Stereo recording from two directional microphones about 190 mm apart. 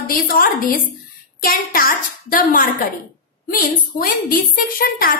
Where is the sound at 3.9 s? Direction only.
50° left (ahead or behind).